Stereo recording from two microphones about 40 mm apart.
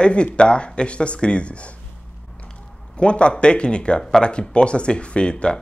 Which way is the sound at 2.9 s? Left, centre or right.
Left.